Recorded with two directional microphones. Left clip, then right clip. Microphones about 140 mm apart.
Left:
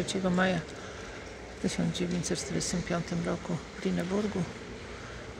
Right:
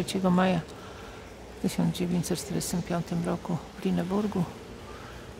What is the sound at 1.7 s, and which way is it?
Speech, 30° right (ahead or behind).